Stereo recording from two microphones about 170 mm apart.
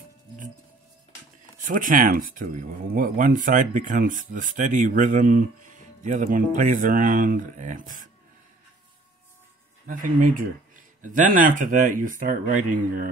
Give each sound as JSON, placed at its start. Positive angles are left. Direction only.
{"t": 1.7, "sound": "speech", "side_deg": -50}
{"t": 9.8, "sound": "speech", "side_deg": -50}